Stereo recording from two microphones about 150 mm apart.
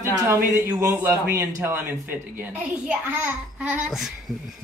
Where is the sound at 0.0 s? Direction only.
15° right (ahead or behind).